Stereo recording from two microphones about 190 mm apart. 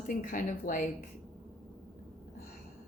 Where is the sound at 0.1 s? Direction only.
45° left (ahead or behind).